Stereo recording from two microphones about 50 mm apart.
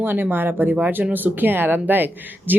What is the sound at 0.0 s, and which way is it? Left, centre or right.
Speech, right.